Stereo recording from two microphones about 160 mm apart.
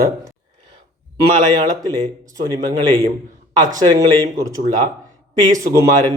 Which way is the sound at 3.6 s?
25° right (ahead or behind).